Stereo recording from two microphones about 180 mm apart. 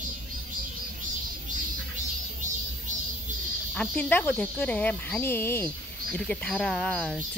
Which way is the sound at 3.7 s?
5° left (ahead or behind).